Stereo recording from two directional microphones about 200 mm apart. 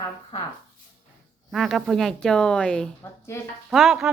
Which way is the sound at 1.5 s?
Centre (ahead or behind).